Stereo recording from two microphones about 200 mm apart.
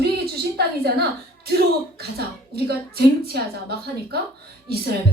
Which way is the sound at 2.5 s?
50° right (ahead or behind).